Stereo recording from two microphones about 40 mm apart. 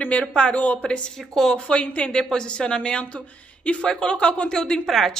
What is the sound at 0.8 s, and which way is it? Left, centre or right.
A woman's voice, left.